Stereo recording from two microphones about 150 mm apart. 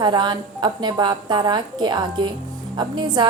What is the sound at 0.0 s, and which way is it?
A woman's voice, 30° right (ahead or behind).